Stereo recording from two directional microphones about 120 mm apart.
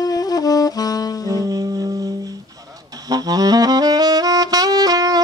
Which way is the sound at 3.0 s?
30° right (ahead or behind).